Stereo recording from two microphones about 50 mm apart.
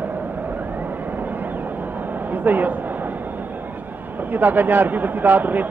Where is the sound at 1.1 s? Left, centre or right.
Right.